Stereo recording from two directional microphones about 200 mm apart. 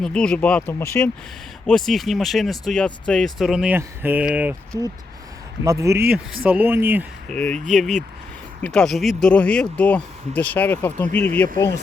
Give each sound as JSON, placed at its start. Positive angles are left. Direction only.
{"t": 0.0, "sound": "speech", "side_deg": 5}
{"t": 4.7, "sound": "speech", "side_deg": 15}
{"t": 5.6, "sound": "speech", "side_deg": -15}
{"t": 7.3, "sound": "speech", "side_deg": 5}